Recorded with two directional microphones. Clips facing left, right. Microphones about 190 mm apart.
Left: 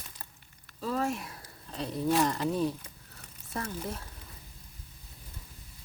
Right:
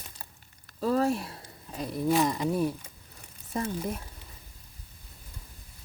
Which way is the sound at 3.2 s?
20° right (ahead or behind).